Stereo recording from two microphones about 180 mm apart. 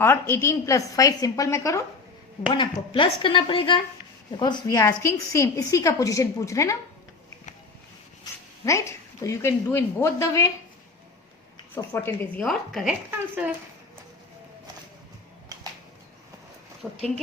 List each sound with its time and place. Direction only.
0.0 s a woman's voice: 15° left (ahead or behind)
2.5 s a woman's voice: 30° left (ahead or behind)
8.6 s a woman's voice: 15° left (ahead or behind)
11.7 s a woman's voice: 10° left (ahead or behind)
13.1 s speech: 10° right (ahead or behind)
16.8 s speech: centre (ahead or behind)